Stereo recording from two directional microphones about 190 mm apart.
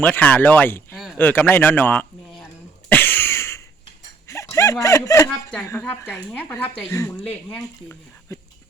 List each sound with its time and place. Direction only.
0.0 s speech: 10° left (ahead or behind)
2.9 s a sound: 10° left (ahead or behind)
5.6 s speech: 10° left (ahead or behind)